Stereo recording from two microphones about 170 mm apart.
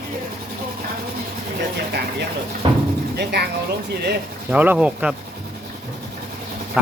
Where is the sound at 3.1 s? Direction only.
75° right (ahead or behind).